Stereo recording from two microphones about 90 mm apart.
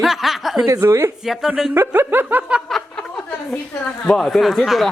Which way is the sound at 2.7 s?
5° left (ahead or behind).